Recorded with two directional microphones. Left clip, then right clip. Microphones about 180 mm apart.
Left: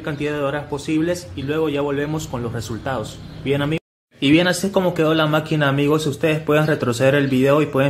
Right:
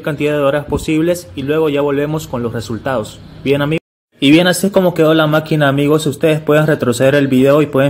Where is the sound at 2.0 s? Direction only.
20° right (ahead or behind).